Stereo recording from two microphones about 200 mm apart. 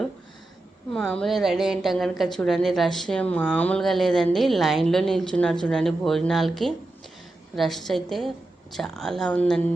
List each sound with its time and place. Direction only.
0.9 s a woman's voice: 5° left (ahead or behind)